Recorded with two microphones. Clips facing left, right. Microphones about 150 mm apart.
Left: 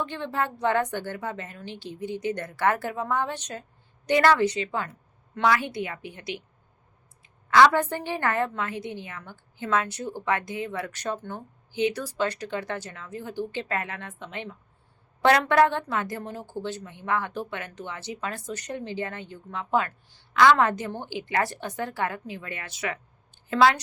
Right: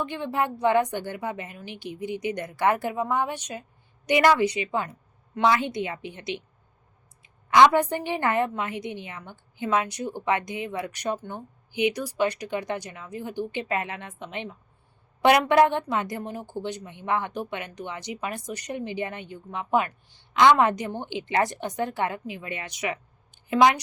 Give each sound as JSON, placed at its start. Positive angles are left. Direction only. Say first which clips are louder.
{"t": 0.0, "sound": "a woman's voice", "louder": "right 2 dB", "side_deg": -15}